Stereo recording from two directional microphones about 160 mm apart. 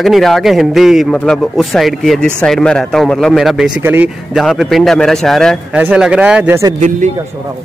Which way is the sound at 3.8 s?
15° right (ahead or behind).